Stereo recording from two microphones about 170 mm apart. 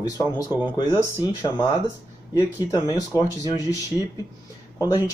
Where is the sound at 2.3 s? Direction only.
20° left (ahead or behind).